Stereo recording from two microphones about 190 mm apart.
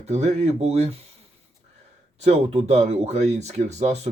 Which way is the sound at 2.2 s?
35° right (ahead or behind).